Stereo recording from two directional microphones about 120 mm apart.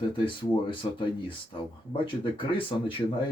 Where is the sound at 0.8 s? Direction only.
45° left (ahead or behind).